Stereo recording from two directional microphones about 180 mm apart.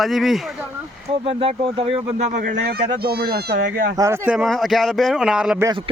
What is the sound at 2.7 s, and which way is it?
Speech, 60° right (ahead or behind).